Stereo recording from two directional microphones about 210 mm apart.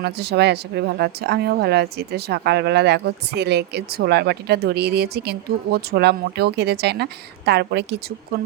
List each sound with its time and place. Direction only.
0.0 s speech: 50° right (ahead or behind)